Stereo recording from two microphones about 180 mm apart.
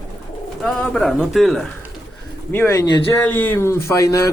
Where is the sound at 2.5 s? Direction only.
15° left (ahead or behind).